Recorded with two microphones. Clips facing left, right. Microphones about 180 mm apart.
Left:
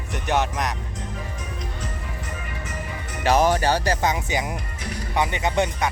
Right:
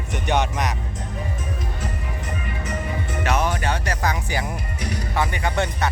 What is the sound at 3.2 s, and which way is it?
Speech, 35° left (ahead or behind).